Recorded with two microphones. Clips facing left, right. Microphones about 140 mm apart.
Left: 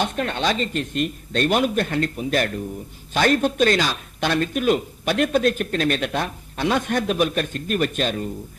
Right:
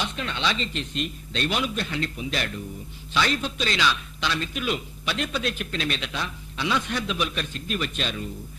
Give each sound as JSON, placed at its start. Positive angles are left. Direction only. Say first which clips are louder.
{"t": 0.0, "sound": "speech", "louder": "left 6 dB", "side_deg": 50}